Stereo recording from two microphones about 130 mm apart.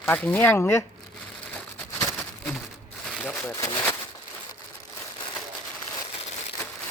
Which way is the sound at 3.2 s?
15° left (ahead or behind).